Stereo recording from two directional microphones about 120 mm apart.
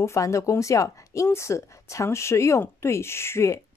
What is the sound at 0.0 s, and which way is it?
Speech, 25° left (ahead or behind).